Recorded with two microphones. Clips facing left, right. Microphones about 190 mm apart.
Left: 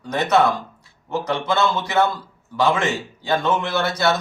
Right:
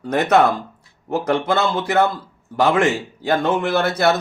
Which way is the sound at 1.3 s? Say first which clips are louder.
Right 2 dB; 55° right (ahead or behind).